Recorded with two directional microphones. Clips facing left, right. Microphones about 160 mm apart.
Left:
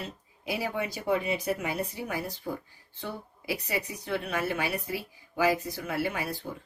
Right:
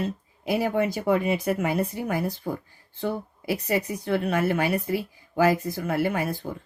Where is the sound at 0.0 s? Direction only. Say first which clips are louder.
Right 9 dB; 50° right (ahead or behind).